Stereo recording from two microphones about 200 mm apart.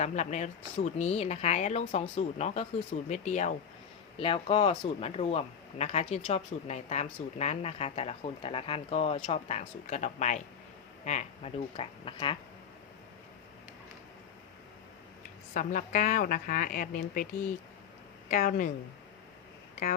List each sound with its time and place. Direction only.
0.0 s speech: 35° left (ahead or behind)
15.5 s a woman's voice: 40° left (ahead or behind)
18.3 s a woman's voice: 45° left (ahead or behind)